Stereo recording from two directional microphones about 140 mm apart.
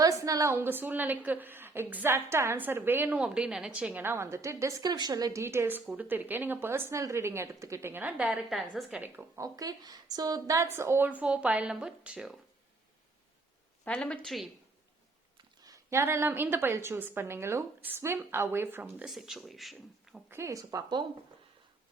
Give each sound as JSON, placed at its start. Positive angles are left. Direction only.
{"t": 0.0, "sound": "a woman's voice", "side_deg": -25}
{"t": 13.8, "sound": "a woman's voice", "side_deg": 5}
{"t": 15.6, "sound": "a woman's voice", "side_deg": -20}
{"t": 20.3, "sound": "speech", "side_deg": -20}